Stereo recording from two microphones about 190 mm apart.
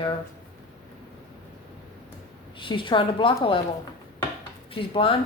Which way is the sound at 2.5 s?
25° left (ahead or behind).